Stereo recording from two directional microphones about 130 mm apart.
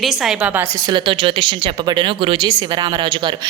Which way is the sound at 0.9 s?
40° right (ahead or behind).